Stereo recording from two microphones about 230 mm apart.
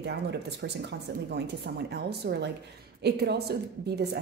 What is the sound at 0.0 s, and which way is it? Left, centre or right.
A woman's voice, right.